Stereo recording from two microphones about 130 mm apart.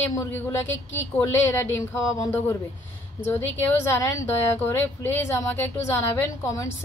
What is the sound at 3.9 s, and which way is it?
A woman's voice, 20° left (ahead or behind).